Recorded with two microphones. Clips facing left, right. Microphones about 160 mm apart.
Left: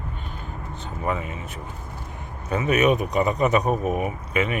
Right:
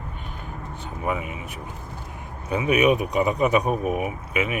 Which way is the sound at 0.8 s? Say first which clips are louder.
Even; 10° right (ahead or behind).